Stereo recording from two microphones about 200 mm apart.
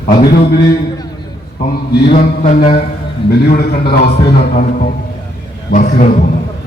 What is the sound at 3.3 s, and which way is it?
A man's voice, 50° left (ahead or behind).